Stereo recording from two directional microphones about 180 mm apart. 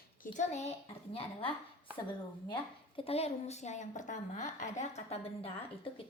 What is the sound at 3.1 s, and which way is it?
A woman's voice, 35° left (ahead or behind).